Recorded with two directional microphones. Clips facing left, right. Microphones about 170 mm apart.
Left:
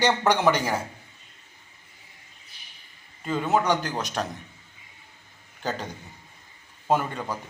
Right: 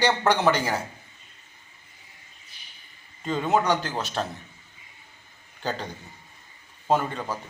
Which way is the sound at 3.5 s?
10° left (ahead or behind).